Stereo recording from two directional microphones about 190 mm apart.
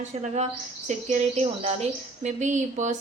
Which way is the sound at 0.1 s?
35° right (ahead or behind).